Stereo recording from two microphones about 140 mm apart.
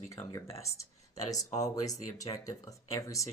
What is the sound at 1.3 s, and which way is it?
Speech, 25° left (ahead or behind).